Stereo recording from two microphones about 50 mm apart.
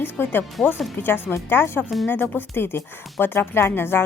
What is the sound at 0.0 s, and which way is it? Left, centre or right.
A woman's voice, left.